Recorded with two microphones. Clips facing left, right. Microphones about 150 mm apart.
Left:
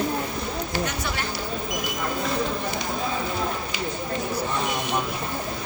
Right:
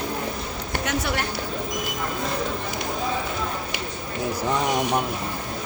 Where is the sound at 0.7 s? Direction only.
65° right (ahead or behind).